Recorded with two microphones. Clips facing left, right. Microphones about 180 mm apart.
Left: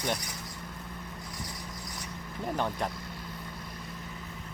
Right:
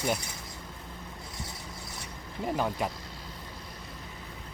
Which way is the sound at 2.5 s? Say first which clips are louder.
Right 1 dB; 5° right (ahead or behind).